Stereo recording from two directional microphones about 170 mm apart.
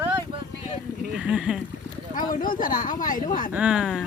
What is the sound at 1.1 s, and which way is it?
Speech, 5° right (ahead or behind).